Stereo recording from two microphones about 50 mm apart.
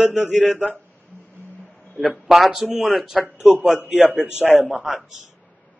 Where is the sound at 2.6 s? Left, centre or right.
Centre.